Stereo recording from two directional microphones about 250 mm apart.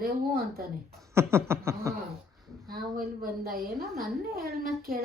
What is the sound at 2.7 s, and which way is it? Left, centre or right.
A woman's voice, right.